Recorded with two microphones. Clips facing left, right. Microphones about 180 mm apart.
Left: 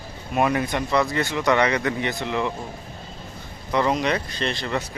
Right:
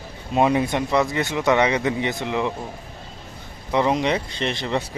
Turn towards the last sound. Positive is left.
turn(degrees=-20)  # may be behind; listen again after turning